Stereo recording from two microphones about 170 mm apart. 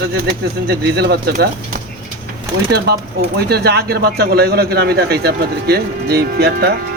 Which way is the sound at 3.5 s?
70° right (ahead or behind).